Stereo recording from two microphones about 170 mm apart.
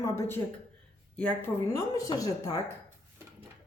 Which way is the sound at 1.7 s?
20° left (ahead or behind).